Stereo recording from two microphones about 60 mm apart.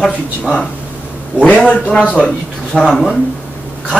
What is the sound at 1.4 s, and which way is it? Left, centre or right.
Speech, centre.